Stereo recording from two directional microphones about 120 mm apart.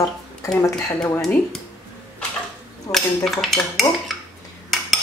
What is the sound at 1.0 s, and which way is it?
Speech, 10° left (ahead or behind).